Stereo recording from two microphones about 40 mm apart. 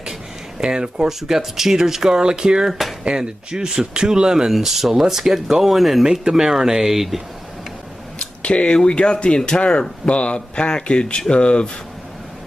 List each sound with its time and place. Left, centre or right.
0.6 s speech: right
1.0 s speech: centre
6.1 s speech: centre
8.2 s speech: left